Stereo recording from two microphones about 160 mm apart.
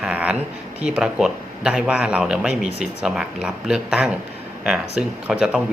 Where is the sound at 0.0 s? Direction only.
5° right (ahead or behind).